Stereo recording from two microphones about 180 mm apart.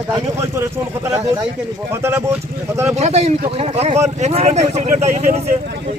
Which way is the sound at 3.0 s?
35° right (ahead or behind).